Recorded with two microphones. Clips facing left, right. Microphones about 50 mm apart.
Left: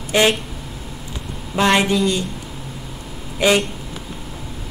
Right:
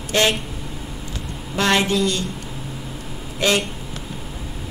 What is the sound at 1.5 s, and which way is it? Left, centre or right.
Speech, centre.